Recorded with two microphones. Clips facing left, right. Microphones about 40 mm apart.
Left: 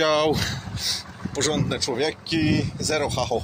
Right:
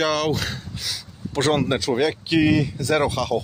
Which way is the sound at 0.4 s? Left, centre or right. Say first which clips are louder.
Even; centre.